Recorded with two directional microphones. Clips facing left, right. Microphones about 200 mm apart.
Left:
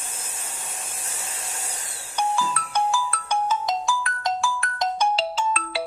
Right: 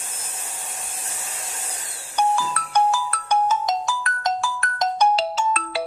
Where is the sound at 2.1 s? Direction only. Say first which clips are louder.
Right 3 dB; 45° right (ahead or behind).